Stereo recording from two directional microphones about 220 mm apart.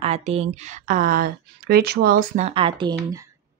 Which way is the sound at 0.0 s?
30° right (ahead or behind).